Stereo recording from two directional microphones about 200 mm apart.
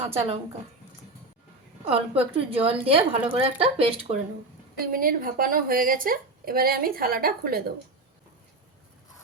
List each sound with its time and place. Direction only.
0.0 s speech: 30° right (ahead or behind)
1.9 s speech: 30° right (ahead or behind)
4.8 s a woman's voice: 45° right (ahead or behind)